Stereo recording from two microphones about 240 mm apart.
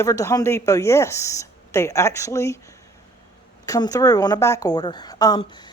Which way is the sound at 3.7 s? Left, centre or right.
Centre.